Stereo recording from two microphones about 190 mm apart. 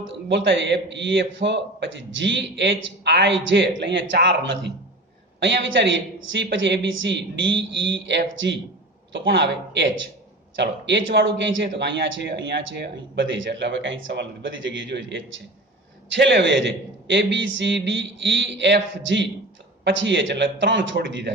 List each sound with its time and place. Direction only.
0.3 s a man's voice: 70° right (ahead or behind)